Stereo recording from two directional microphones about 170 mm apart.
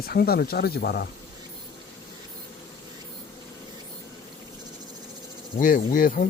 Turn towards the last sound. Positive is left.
turn(degrees=55)  # may be behind; listen again after turning